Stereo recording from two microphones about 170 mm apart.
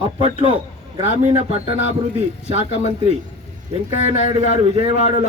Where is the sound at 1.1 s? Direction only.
40° right (ahead or behind).